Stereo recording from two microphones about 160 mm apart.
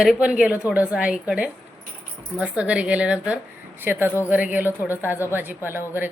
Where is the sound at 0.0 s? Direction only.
5° right (ahead or behind).